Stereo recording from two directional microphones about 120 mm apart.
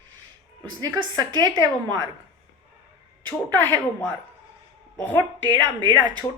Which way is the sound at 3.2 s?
15° left (ahead or behind).